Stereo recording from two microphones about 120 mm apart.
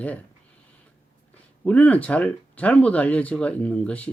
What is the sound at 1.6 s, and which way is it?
Speech, 10° left (ahead or behind).